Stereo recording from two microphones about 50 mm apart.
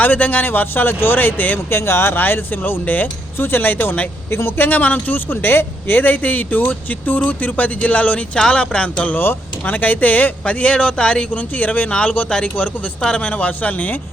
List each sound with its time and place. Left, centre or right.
0.0 s a man's voice: left
1.7 s speech: left
3.3 s speech: left
4.3 s a man's voice: left
8.4 s speech: centre
9.1 s a man's voice: left; by 11.3 s centre
11.3 s a man's voice: left